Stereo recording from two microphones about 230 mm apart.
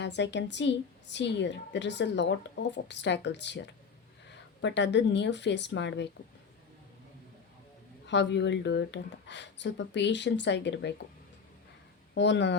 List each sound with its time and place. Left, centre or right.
0.0 s a woman's voice: left
8.0 s a woman's voice: left
12.1 s a woman's voice: left